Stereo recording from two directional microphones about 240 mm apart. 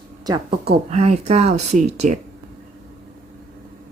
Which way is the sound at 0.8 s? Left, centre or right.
Right.